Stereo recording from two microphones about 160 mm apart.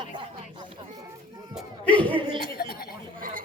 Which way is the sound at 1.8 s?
10° left (ahead or behind).